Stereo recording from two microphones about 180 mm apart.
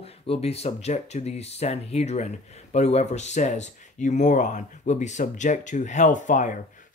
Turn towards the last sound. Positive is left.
turn(degrees=45)  # may be behind; listen again after turning